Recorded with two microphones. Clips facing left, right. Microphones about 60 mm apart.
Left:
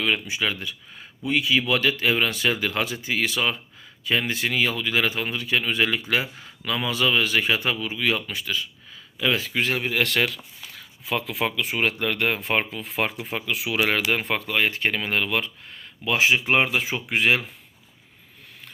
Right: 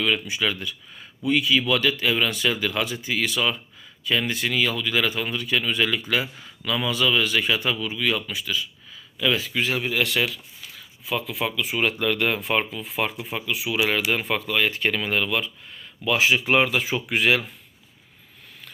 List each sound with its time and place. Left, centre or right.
0.0 s speech: left
10.1 s speech: left
11.4 s speech: left
13.3 s speech: left
13.7 s speech: left
16.0 s speech: left